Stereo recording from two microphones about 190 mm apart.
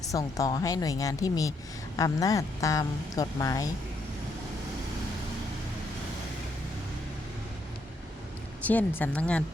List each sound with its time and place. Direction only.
0.1 s speech: 15° left (ahead or behind)
8.6 s speech: 10° left (ahead or behind)